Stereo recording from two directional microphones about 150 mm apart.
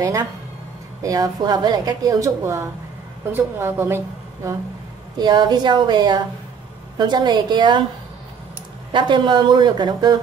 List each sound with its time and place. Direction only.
1.0 s a woman's voice: 25° right (ahead or behind)
5.1 s a woman's voice: 30° right (ahead or behind)
8.9 s speech: 30° right (ahead or behind)